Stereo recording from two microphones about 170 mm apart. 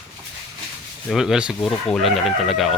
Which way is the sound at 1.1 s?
Centre (ahead or behind).